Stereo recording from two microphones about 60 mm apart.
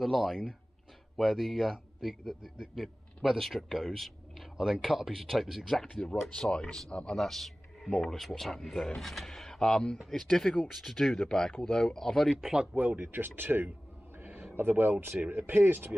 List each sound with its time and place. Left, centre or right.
0.0 s a man's voice: centre
7.2 s a man's voice: centre
12.7 s speech: right